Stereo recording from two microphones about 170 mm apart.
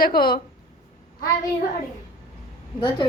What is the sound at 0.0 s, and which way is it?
Speech, 60° left (ahead or behind).